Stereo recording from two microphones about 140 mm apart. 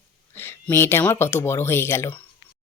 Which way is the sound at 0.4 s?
15° left (ahead or behind).